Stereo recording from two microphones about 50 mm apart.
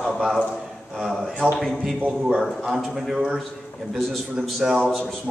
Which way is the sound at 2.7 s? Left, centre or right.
Centre.